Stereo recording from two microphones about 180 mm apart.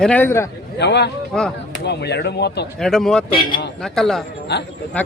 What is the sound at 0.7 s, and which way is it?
Speech, 70° left (ahead or behind).